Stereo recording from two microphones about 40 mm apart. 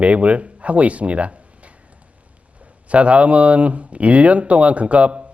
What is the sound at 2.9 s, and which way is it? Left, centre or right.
A man's voice, right.